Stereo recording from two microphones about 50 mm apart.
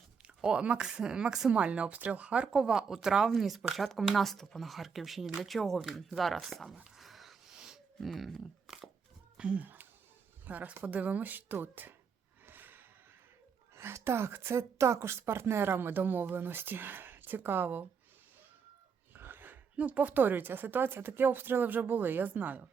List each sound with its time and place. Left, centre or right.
0.4 s speech: right
2.5 s speech: centre
6.9 s a sound: centre
7.5 s a sound: centre
8.0 s speech: centre
9.4 s speech: right
10.4 s a woman's voice: right
12.5 s snort: right
13.7 s a woman's voice: right
19.1 s a sound: right
19.7 s a woman's voice: right